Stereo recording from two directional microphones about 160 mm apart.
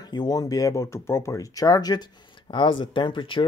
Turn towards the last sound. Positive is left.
turn(degrees=30)  # may be behind; listen again after turning